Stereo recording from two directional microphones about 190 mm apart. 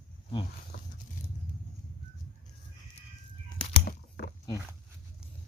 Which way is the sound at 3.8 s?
55° left (ahead or behind).